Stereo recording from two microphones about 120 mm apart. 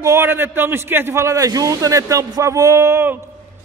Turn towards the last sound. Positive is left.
turn(degrees=-20)  # may be behind; listen again after turning